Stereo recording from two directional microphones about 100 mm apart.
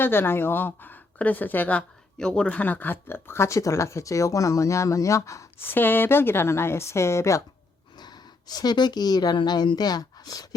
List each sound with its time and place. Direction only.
0.0 s a woman's voice: 20° left (ahead or behind)
5.6 s a woman's voice: 20° left (ahead or behind)
7.9 s speech: 45° left (ahead or behind)